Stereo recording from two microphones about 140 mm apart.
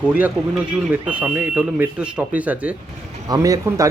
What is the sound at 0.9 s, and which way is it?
Speech, 10° right (ahead or behind).